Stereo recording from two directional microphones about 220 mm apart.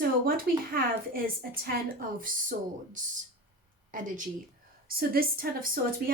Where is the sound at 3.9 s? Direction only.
35° right (ahead or behind).